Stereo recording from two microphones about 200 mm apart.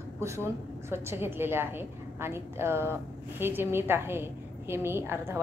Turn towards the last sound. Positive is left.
turn(degrees=-10)  # may be behind; listen again after turning